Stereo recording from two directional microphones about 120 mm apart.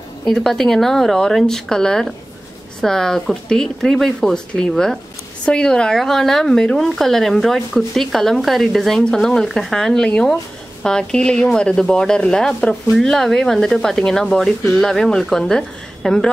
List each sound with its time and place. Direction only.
0.2 s speech: 5° left (ahead or behind)